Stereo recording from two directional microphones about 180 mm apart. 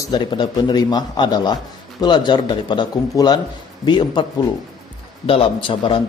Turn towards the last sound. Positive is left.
turn(degrees=30)  # may be behind; listen again after turning